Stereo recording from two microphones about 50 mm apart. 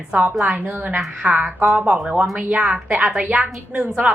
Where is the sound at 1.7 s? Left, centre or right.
Right.